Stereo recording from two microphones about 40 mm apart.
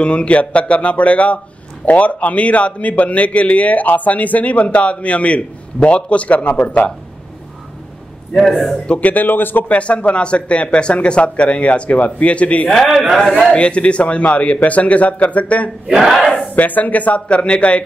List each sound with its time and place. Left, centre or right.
0.0 s a man's voice: left
8.5 s a man's voice: centre
9.0 s a man's voice: left
9.7 s a man's voice: left
12.6 s a man's voice: centre
13.5 s a man's voice: left
16.0 s a man's voice: centre
16.5 s a man's voice: left